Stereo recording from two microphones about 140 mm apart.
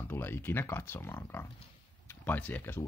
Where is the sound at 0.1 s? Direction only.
15° left (ahead or behind).